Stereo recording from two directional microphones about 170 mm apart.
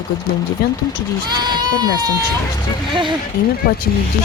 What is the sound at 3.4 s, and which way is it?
Speech, 60° left (ahead or behind).